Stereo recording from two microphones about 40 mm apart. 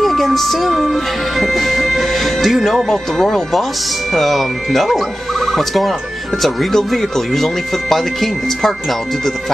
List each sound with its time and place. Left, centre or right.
0.0 s music: centre
2.9 s speech: centre